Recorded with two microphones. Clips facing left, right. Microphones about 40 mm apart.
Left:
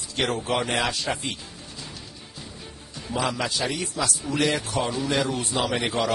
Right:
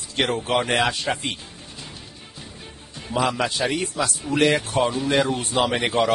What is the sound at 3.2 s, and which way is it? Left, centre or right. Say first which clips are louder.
A man's voice: right 4 dB; right.